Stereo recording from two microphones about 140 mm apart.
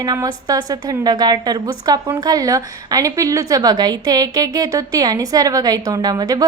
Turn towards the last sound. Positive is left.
turn(degrees=-25)  # may be behind; listen again after turning